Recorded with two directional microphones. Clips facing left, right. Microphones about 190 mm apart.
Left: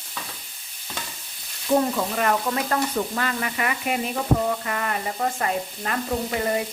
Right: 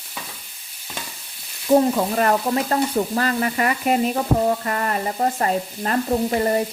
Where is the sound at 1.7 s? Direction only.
35° right (ahead or behind).